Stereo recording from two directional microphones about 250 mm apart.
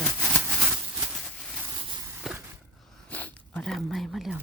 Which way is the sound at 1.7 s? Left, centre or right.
Centre.